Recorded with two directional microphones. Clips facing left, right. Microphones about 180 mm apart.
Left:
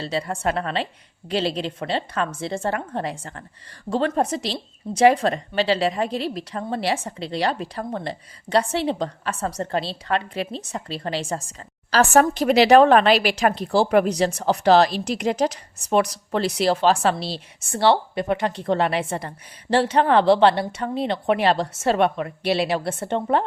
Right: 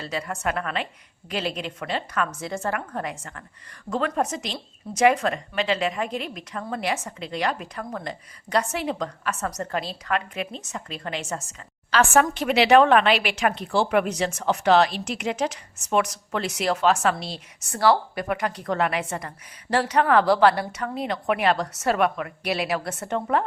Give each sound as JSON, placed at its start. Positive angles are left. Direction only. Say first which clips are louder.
{"t": 0.0, "sound": "a woman's voice", "louder": "left 4 dB", "side_deg": 30}